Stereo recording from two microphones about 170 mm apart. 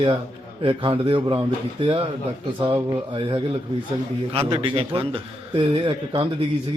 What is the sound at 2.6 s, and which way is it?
A man's voice, 30° right (ahead or behind).